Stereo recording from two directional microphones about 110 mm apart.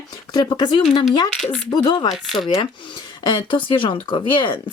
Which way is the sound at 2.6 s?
45° left (ahead or behind).